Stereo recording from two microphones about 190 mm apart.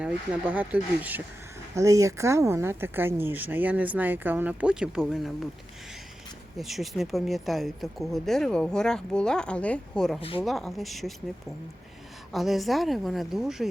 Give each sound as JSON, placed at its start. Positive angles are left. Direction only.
{"t": 0.0, "sound": "speech", "side_deg": -5}
{"t": 6.6, "sound": "speech", "side_deg": 0}
{"t": 10.2, "sound": "speech", "side_deg": 30}
{"t": 10.4, "sound": "speech", "side_deg": 0}
{"t": 12.3, "sound": "speech", "side_deg": 0}